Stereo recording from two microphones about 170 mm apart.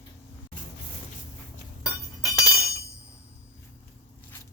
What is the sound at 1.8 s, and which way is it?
Glass, 20° left (ahead or behind).